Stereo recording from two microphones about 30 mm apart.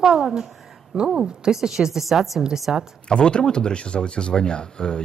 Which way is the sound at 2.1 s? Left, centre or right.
Right.